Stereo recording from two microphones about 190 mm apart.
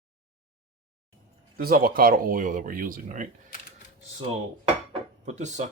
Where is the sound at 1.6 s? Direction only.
50° right (ahead or behind).